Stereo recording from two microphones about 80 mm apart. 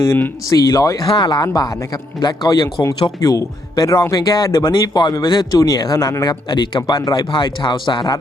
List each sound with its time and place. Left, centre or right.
0.4 s speech: left
1.0 s a man's voice: left
3.2 s speech: left
5.5 s speech: left
6.5 s speech: left
7.1 s speech: left